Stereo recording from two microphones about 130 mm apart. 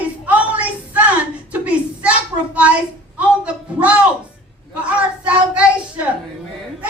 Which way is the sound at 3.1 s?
10° right (ahead or behind).